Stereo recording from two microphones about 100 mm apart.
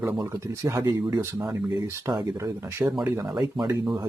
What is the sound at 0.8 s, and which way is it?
Speech, 45° right (ahead or behind).